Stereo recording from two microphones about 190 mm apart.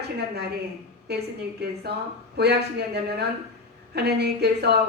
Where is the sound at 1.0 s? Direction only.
60° right (ahead or behind).